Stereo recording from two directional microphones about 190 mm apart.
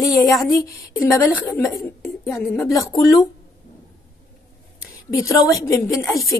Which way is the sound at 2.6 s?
15° left (ahead or behind).